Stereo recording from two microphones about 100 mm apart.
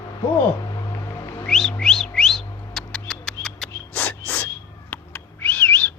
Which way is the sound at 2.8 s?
5° left (ahead or behind).